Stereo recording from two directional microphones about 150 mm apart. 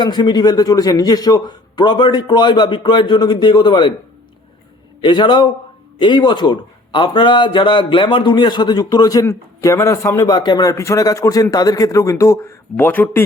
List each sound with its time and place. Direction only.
0.0 s a man's voice: 30° left (ahead or behind)
4.9 s a man's voice: 30° left (ahead or behind); by 13.2 s 15° left (ahead or behind)